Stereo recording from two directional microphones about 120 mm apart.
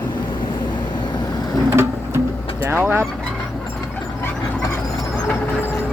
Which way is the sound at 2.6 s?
20° right (ahead or behind).